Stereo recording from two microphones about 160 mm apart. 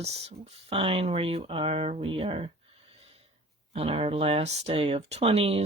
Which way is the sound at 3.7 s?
35° right (ahead or behind).